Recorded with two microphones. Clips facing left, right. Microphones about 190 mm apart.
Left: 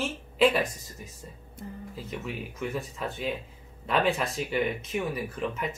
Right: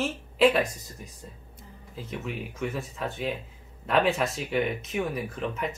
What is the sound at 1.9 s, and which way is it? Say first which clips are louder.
Speech: right 3 dB; centre (ahead or behind).